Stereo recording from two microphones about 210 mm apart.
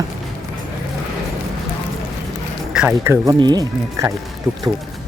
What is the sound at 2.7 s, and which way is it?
Speech, 10° right (ahead or behind).